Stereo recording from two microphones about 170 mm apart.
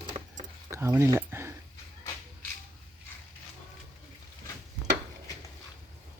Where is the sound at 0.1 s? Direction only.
40° right (ahead or behind).